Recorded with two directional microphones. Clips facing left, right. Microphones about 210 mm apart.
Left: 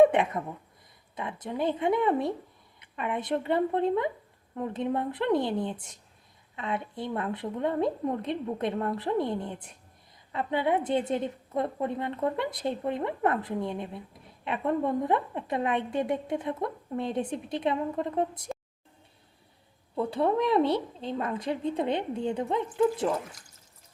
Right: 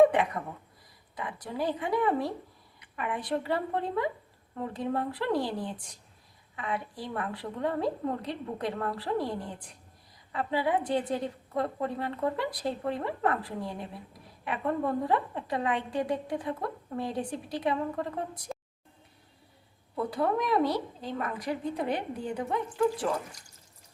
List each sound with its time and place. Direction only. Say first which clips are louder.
0.0 s a woman's voice: left 1 dB; 25° left (ahead or behind)
20.1 s a woman's voice: left 3 dB; 25° left (ahead or behind)